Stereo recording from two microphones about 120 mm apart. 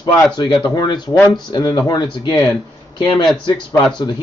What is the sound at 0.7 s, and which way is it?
Speech, 35° left (ahead or behind).